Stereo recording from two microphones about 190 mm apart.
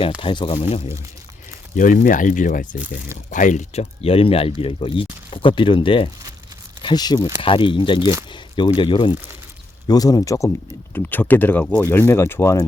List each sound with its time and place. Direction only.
0.2 s speech: 25° left (ahead or behind)
1.7 s speech: 45° left (ahead or behind)
2.7 s speech: 5° right (ahead or behind)
3.2 s speech: 40° left (ahead or behind); by 12.6 s 15° left (ahead or behind)